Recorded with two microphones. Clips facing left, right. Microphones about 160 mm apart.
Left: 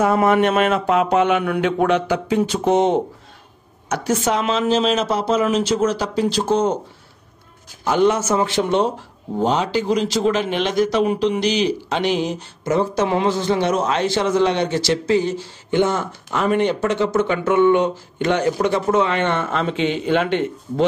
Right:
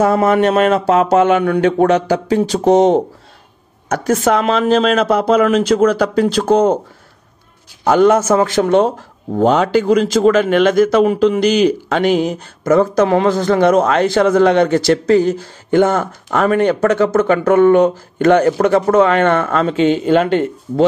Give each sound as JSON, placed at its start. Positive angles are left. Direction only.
{"t": 0.0, "sound": "speech", "side_deg": -35}
{"t": 3.9, "sound": "speech", "side_deg": -50}
{"t": 7.8, "sound": "speech", "side_deg": -50}